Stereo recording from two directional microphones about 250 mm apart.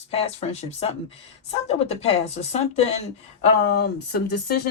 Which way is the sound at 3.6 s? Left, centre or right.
Left.